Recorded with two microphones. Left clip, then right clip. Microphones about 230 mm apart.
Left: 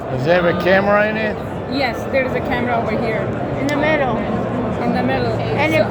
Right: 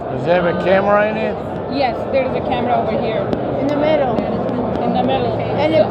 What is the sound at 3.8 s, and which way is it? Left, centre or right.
Speech, left.